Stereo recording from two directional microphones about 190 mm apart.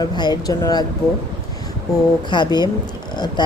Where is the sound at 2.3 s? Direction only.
25° left (ahead or behind).